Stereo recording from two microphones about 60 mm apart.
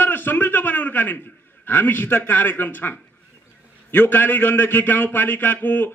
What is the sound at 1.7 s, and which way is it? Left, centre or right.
A man's voice, left.